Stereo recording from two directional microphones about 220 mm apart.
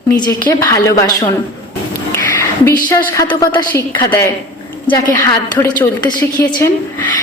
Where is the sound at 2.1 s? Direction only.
10° left (ahead or behind).